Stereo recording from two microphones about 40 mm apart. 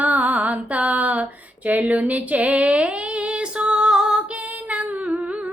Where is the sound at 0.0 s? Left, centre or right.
Right; by 4.2 s centre.